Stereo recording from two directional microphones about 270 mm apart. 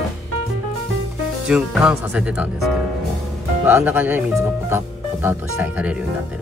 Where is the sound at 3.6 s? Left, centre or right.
Centre.